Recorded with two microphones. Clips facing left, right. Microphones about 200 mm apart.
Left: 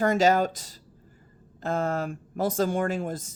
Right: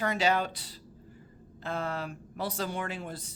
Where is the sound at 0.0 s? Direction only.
45° left (ahead or behind).